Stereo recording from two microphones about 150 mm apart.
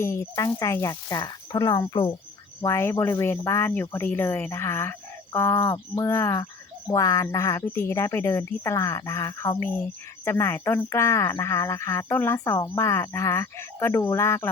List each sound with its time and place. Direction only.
0.0 s speech: 20° left (ahead or behind)